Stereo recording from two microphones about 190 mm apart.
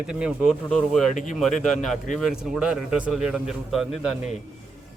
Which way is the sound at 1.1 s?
40° left (ahead or behind).